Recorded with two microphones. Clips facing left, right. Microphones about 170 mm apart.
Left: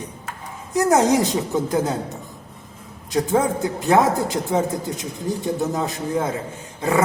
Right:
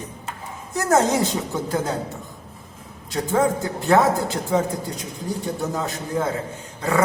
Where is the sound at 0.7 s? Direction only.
15° left (ahead or behind).